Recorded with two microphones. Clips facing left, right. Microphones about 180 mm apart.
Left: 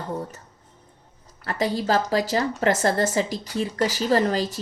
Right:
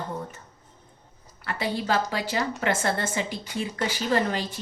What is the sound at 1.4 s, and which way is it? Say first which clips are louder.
Speech: left 4 dB; 40° left (ahead or behind).